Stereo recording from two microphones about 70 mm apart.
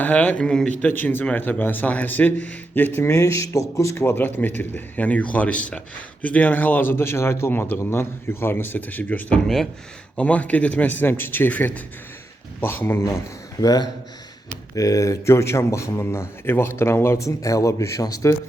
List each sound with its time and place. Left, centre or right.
0.0 s speech: left
0.9 s speech: left
3.0 s a man's voice: left
4.0 s a man's voice: left
13.1 s speech: left
14.8 s a man's voice: left